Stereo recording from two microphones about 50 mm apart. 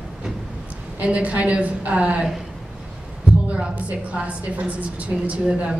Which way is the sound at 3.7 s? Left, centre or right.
Right.